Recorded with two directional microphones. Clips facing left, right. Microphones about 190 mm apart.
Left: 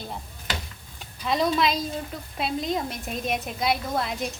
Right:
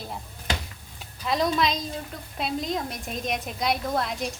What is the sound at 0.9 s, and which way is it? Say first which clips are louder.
A woman's voice: left 1 dB; centre (ahead or behind).